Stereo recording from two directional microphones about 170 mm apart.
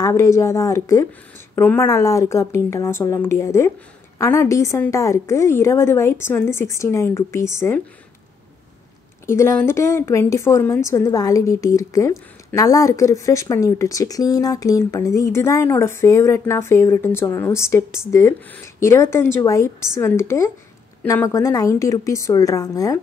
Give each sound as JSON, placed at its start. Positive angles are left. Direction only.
{"t": 0.0, "sound": "a woman's voice", "side_deg": 15}
{"t": 9.2, "sound": "a woman's voice", "side_deg": 15}